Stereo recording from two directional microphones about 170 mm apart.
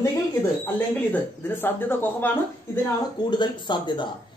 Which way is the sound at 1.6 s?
10° left (ahead or behind).